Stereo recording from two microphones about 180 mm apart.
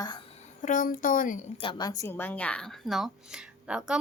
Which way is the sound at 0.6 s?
45° left (ahead or behind).